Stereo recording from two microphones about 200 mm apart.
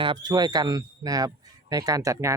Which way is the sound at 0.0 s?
20° right (ahead or behind).